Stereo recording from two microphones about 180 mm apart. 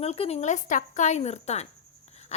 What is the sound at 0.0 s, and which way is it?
A woman's voice, 35° left (ahead or behind).